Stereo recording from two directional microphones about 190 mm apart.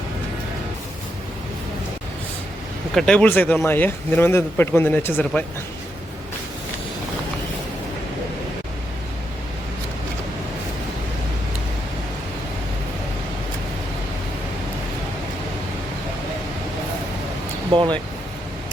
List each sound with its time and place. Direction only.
2.9 s speech: 5° left (ahead or behind)
17.7 s speech: 25° right (ahead or behind)